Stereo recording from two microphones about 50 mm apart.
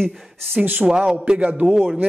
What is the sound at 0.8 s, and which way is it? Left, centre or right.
Speech, centre.